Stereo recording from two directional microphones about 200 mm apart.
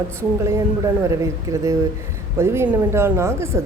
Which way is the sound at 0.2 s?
15° right (ahead or behind).